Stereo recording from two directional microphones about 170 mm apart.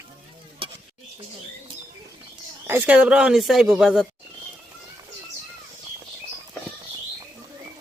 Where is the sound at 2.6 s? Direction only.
10° right (ahead or behind).